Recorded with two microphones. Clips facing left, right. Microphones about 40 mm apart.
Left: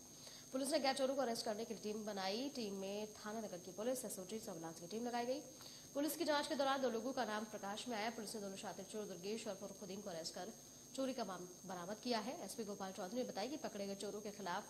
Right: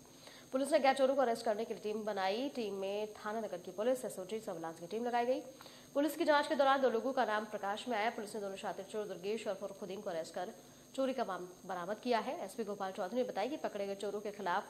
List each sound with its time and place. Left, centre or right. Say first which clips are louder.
0.5 s a woman's voice: right 8 dB; right